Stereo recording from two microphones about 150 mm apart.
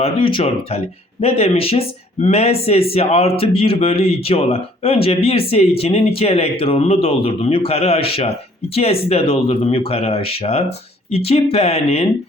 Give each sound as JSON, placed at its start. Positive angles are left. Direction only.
{"t": 0.0, "sound": "speech", "side_deg": 35}